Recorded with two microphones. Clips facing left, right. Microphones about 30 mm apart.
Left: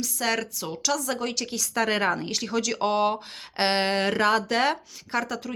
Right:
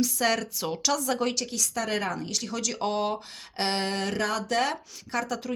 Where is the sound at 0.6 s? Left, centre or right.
Centre.